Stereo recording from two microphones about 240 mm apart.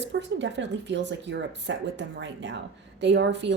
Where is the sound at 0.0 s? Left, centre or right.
Right.